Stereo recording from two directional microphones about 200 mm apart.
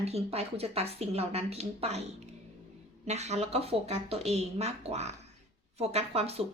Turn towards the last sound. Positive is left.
turn(degrees=-30)  # may be behind; listen again after turning